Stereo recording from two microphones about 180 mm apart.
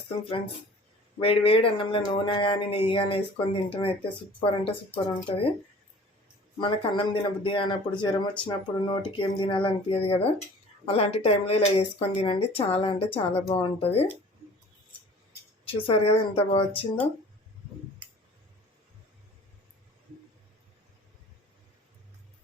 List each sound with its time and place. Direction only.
1.2 s speech: 30° left (ahead or behind)
6.6 s speech: 30° left (ahead or behind)
15.6 s speech: 30° left (ahead or behind)